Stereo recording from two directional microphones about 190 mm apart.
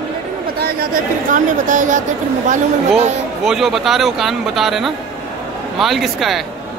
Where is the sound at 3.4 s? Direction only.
Centre (ahead or behind).